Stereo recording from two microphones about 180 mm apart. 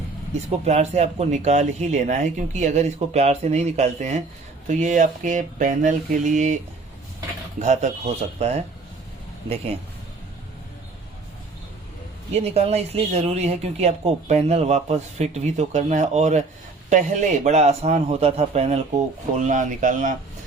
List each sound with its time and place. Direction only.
0.6 s speech: 35° right (ahead or behind)
7.6 s speech: 40° right (ahead or behind)
12.3 s speech: 35° right (ahead or behind)